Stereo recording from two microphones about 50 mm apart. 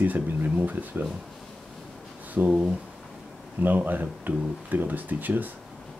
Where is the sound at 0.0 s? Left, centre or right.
Right.